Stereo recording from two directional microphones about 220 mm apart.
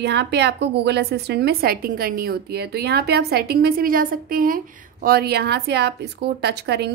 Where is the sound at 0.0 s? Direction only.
50° right (ahead or behind).